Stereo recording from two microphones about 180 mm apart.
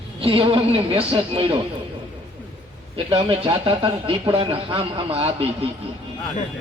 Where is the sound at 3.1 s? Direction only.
30° right (ahead or behind).